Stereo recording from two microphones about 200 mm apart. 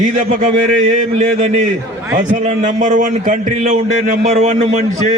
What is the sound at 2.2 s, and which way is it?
A man's voice, 40° right (ahead or behind).